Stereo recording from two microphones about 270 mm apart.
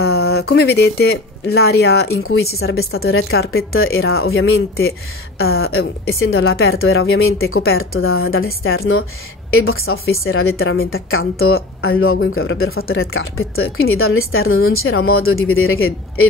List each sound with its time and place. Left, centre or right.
0.0 s speech: left
2.6 s speech: left